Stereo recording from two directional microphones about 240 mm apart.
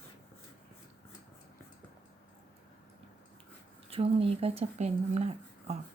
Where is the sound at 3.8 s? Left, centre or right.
Right.